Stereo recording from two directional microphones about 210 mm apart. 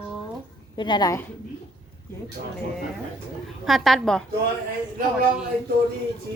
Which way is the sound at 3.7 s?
Centre (ahead or behind).